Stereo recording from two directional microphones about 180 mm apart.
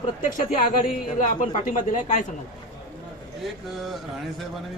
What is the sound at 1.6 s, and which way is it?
Speech, 45° left (ahead or behind).